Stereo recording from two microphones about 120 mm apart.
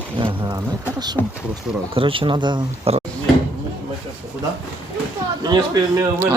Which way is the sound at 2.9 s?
55° right (ahead or behind).